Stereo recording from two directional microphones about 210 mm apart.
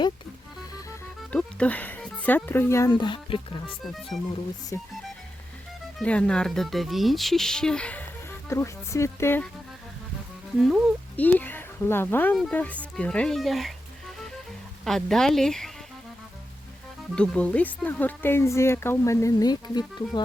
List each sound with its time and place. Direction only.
1.3 s speech: 5° left (ahead or behind); by 3.8 s 25° left (ahead or behind)
4.1 s music: 30° left (ahead or behind)
4.7 s speech: 15° left (ahead or behind)
6.0 s speech: 5° left (ahead or behind)
10.6 s speech: centre (ahead or behind)
14.8 s speech: centre (ahead or behind)
17.2 s speech: 5° left (ahead or behind)